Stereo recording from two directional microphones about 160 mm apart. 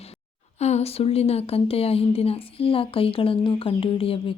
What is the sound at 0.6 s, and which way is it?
Speech, 40° left (ahead or behind).